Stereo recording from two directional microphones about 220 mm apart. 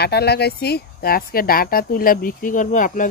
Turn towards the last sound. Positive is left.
turn(degrees=35)  # may be behind; listen again after turning